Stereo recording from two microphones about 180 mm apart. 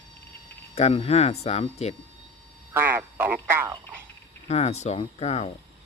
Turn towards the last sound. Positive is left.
turn(degrees=35)  # may be behind; listen again after turning